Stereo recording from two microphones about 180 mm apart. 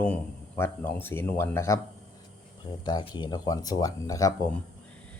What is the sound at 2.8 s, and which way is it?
Speech, 25° left (ahead or behind).